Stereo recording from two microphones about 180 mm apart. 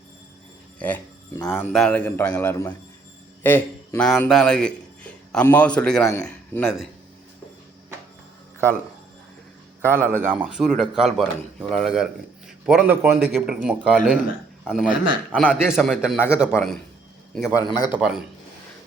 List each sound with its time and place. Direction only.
0.8 s a sound: 10° left (ahead or behind)
1.5 s a man's voice: centre (ahead or behind)
10.2 s a man's voice: 10° right (ahead or behind)
16.1 s a man's voice: 15° left (ahead or behind)
17.7 s speech: 25° left (ahead or behind)
17.9 s a man's voice: 5° right (ahead or behind)